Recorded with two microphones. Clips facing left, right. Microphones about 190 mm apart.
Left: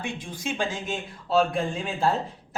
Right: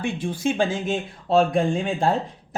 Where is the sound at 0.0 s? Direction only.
55° right (ahead or behind).